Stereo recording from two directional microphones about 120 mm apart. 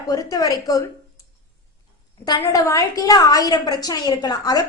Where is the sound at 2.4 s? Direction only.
25° left (ahead or behind).